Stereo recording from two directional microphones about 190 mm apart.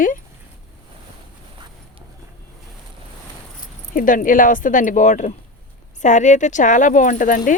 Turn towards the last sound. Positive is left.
turn(degrees=45)  # may be behind; listen again after turning